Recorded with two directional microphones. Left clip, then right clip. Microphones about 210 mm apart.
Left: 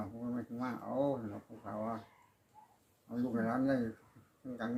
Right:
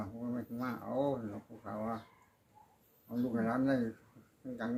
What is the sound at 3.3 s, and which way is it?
Speech, 5° right (ahead or behind).